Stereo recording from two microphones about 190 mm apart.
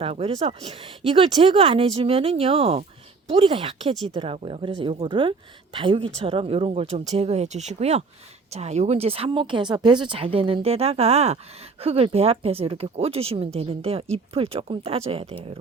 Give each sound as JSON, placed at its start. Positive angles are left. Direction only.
{"t": 0.0, "sound": "speech", "side_deg": -30}